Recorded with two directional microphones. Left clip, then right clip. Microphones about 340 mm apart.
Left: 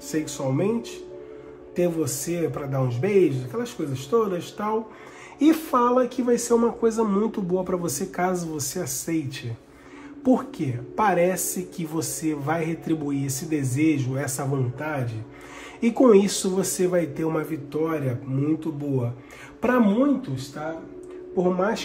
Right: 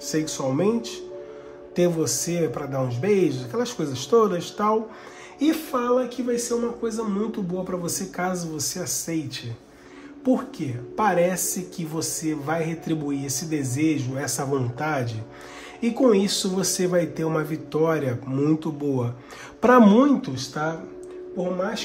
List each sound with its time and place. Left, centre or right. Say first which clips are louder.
0.1 s speech: right 1 dB; centre
1.8 s a man's voice: right 2 dB; centre
21.5 s speech: left 3 dB; centre